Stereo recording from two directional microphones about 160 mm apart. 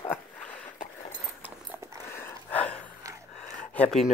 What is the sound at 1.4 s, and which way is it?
Horse, 15° right (ahead or behind).